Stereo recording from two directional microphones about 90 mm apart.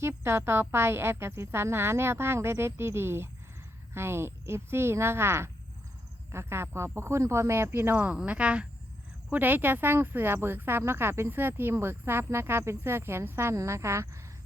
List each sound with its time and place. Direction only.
0.3 s speech: 30° right (ahead or behind)